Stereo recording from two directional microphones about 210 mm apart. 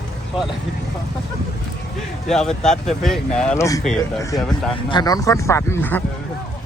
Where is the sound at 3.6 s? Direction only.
15° left (ahead or behind).